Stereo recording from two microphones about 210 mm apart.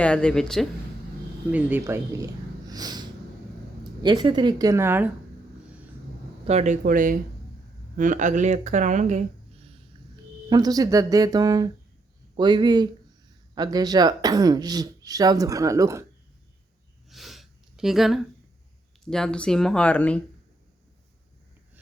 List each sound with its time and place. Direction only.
0.0 s speech: 5° left (ahead or behind)
6.4 s speech: 30° right (ahead or behind); by 16.0 s 15° right (ahead or behind)
17.1 s sniff: centre (ahead or behind)
19.1 s speech: 5° left (ahead or behind)